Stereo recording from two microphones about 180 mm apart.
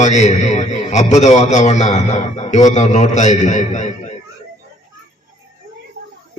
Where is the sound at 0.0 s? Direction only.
40° left (ahead or behind).